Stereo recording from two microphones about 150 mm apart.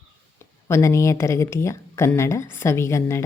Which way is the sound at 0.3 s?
20° left (ahead or behind).